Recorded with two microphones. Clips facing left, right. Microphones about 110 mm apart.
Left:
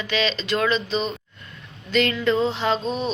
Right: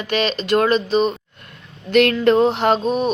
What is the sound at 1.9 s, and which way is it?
Music, 60° right (ahead or behind).